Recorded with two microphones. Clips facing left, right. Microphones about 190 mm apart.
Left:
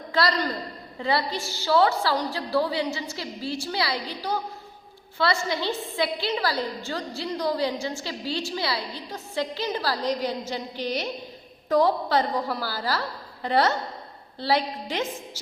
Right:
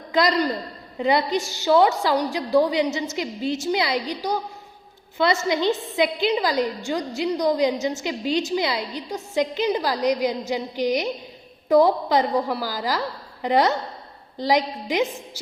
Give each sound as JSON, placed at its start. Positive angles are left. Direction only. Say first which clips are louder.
{"t": 0.1, "sound": "a man's voice", "louder": "right 4 dB", "side_deg": -15}